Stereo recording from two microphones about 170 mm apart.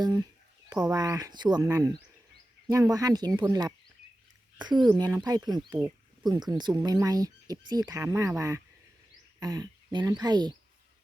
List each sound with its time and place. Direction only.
0.0 s speech: 25° right (ahead or behind)